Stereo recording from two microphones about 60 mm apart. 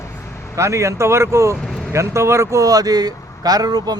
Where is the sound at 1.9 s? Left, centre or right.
Right.